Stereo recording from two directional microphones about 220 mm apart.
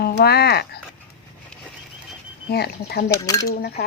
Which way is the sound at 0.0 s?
45° left (ahead or behind).